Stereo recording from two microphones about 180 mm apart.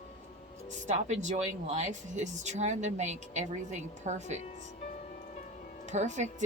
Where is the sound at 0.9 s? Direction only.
40° right (ahead or behind).